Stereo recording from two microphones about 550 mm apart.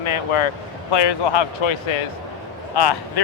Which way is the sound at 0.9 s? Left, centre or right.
Left.